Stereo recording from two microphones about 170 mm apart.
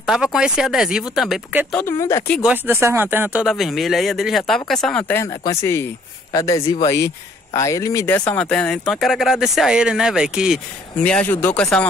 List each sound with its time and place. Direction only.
0.0 s speech: 5° right (ahead or behind)
1.7 s speech: 15° left (ahead or behind)
2.4 s speech: 10° right (ahead or behind)
11.0 s speech: 10° left (ahead or behind)